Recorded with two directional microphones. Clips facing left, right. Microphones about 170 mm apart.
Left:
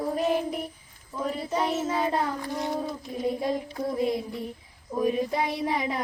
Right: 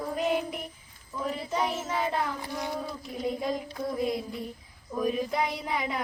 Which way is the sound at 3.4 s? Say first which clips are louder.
Left 3 dB; 25° left (ahead or behind).